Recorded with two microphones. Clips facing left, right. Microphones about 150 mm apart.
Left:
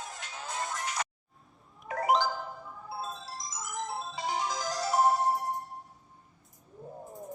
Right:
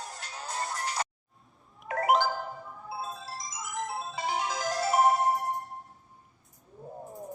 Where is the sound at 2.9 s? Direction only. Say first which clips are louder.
Right 1 dB; 5° right (ahead or behind).